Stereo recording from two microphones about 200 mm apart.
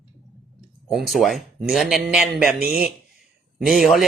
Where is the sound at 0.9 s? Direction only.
Centre (ahead or behind).